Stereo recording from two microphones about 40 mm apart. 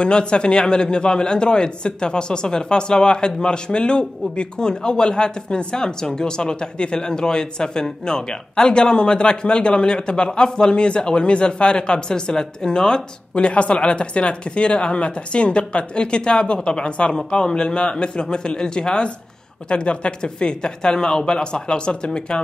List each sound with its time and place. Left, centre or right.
0.0 s speech: left